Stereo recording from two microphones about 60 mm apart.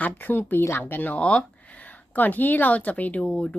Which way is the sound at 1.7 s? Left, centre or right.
Left.